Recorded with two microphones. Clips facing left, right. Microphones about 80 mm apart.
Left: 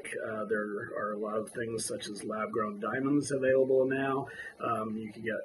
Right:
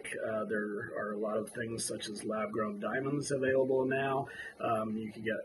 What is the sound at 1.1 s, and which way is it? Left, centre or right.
Speech, centre.